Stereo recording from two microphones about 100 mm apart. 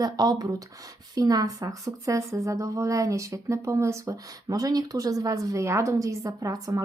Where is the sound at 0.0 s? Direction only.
40° right (ahead or behind).